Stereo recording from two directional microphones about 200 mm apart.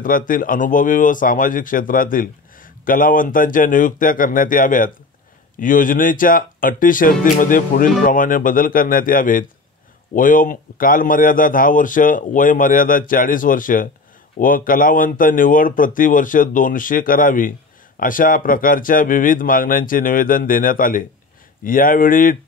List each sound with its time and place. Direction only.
0.0 s speech: 45° left (ahead or behind)